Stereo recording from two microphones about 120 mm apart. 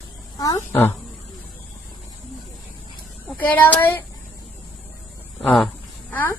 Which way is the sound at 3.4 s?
15° left (ahead or behind).